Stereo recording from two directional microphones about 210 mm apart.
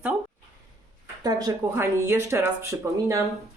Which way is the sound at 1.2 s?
15° right (ahead or behind).